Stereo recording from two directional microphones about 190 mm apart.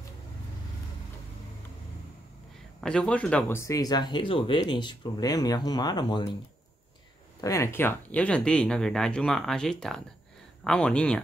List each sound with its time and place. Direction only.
2.8 s speech: 5° left (ahead or behind); by 6.3 s 20° left (ahead or behind)
7.4 s speech: 15° left (ahead or behind)